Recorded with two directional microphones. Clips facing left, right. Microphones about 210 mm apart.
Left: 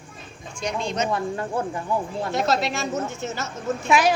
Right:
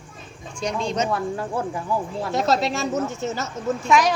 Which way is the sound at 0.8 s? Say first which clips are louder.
Right 2 dB; 35° right (ahead or behind).